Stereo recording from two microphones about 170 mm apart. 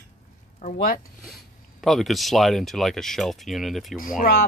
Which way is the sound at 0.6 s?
50° left (ahead or behind).